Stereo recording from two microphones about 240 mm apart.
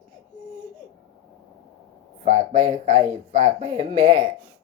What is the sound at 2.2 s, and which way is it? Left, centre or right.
Speech, right.